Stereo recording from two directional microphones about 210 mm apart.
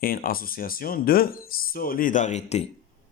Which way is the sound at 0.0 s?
45° left (ahead or behind).